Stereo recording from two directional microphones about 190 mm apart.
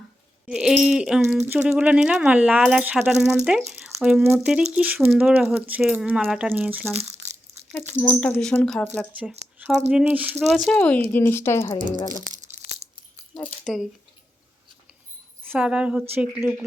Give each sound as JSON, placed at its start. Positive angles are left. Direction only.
{"t": 0.4, "sound": "speech", "side_deg": -5}
{"t": 7.0, "sound": "crushing", "side_deg": -35}
{"t": 7.7, "sound": "speech", "side_deg": 10}
{"t": 12.2, "sound": "a sound", "side_deg": -40}
{"t": 15.4, "sound": "speech", "side_deg": -5}